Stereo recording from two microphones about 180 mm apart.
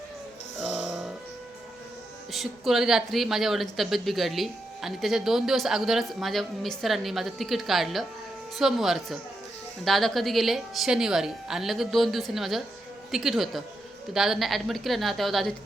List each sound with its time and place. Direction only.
0.6 s music: centre (ahead or behind)
2.3 s speech: centre (ahead or behind)